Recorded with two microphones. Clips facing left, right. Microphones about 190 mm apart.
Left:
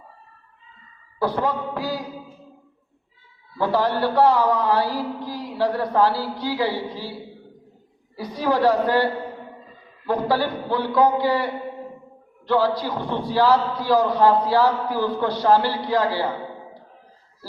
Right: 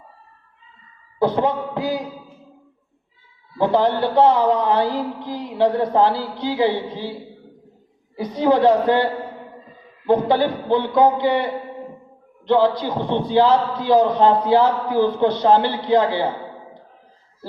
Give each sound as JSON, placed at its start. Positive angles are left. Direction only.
{"t": 1.2, "sound": "a man's voice", "side_deg": -20}
{"t": 3.6, "sound": "a man's voice", "side_deg": -20}
{"t": 10.1, "sound": "a man's voice", "side_deg": -20}